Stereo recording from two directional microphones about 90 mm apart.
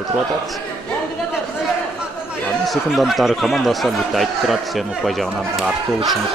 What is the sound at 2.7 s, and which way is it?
Speech, centre (ahead or behind).